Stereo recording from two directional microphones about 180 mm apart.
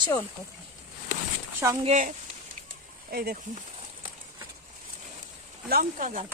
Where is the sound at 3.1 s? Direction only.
60° right (ahead or behind).